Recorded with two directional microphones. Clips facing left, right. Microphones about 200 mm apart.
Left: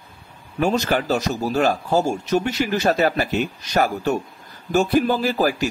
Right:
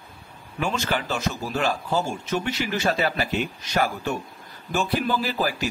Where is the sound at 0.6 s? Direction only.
40° left (ahead or behind).